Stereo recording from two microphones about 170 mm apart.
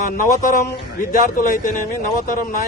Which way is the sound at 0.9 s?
50° left (ahead or behind).